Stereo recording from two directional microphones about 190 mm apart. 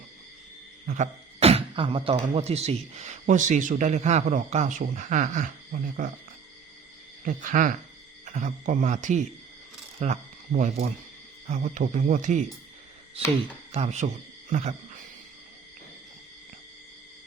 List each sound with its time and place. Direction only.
0.9 s speech: 40° right (ahead or behind)
7.3 s speech: 45° right (ahead or behind)
13.7 s speech: 35° right (ahead or behind)